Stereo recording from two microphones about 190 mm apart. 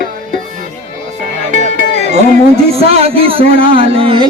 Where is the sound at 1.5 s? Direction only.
40° right (ahead or behind).